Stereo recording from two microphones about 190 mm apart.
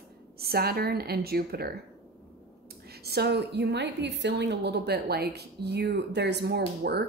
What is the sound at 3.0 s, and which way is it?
A woman's voice, 55° right (ahead or behind).